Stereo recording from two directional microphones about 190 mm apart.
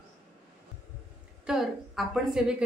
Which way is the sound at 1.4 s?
Centre (ahead or behind).